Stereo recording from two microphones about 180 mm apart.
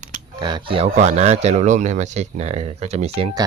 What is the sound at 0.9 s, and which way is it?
Speech, 40° right (ahead or behind).